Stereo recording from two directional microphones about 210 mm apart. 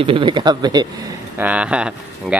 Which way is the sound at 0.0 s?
25° right (ahead or behind).